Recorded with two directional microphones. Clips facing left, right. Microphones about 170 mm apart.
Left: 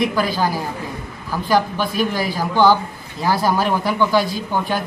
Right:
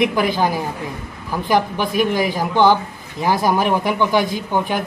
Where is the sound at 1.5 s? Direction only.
15° right (ahead or behind).